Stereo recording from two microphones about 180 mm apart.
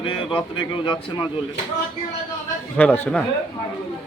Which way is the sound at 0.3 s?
30° left (ahead or behind).